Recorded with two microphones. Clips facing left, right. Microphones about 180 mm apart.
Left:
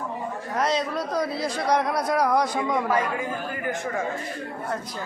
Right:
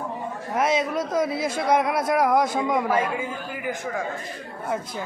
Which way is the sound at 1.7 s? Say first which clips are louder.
Right 2 dB; 5° right (ahead or behind).